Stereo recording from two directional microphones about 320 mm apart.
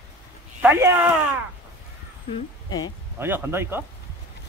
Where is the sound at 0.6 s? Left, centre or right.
Centre.